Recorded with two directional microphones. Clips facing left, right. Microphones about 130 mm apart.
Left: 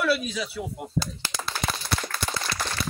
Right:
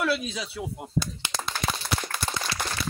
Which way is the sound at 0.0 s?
20° right (ahead or behind).